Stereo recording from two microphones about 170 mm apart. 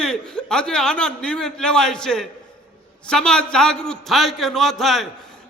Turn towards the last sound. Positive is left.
turn(degrees=0)  # may be behind; listen again after turning